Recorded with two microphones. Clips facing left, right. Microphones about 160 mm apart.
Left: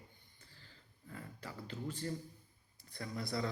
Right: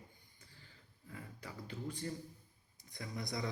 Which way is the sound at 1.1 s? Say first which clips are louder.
Left 1 dB; 15° right (ahead or behind).